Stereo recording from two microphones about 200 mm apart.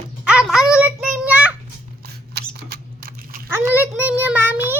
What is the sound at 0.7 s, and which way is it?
Child singing, 5° right (ahead or behind).